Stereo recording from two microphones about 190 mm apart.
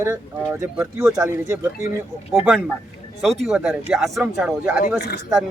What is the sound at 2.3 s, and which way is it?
Speech, centre (ahead or behind).